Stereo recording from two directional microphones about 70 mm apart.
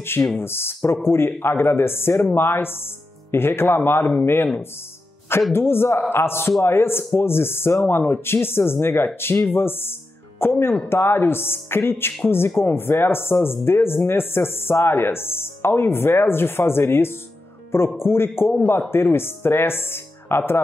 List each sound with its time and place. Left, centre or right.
0.0 s speech: left
5.5 s speech: left